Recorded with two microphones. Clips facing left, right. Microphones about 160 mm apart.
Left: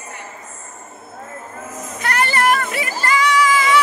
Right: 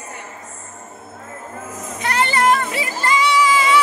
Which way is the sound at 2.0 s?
20° right (ahead or behind).